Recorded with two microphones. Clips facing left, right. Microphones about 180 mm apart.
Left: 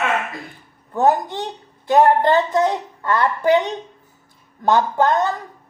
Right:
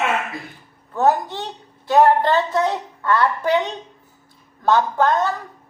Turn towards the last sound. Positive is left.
turn(degrees=20)  # may be behind; listen again after turning